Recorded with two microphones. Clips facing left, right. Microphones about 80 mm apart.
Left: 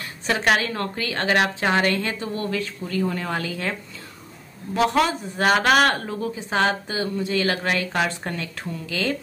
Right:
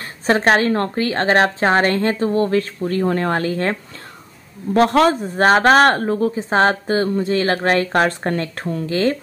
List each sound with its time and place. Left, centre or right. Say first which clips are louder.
0.0 s speech: right 6 dB; right
4.7 s speech: right 6 dB; right